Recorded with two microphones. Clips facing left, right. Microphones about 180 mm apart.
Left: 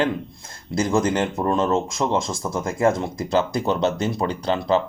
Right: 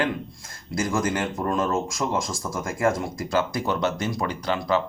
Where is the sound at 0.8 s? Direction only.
25° left (ahead or behind).